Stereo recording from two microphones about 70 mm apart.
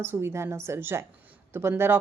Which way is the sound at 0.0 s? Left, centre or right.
Right.